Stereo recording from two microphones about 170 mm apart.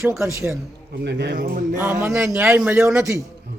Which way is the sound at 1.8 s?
15° right (ahead or behind).